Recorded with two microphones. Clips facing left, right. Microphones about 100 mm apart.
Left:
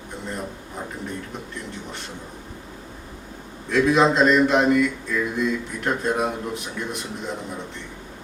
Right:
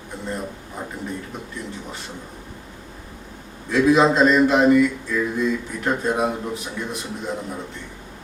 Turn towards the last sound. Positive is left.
turn(degrees=0)  # may be behind; listen again after turning